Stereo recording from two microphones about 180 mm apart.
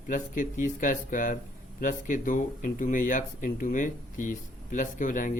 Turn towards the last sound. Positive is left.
turn(degrees=45)  # may be behind; listen again after turning